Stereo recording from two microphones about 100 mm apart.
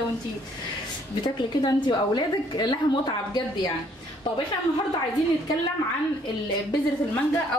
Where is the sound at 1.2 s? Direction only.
45° left (ahead or behind).